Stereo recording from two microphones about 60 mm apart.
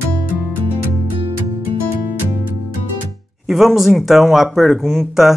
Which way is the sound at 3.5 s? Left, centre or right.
Centre.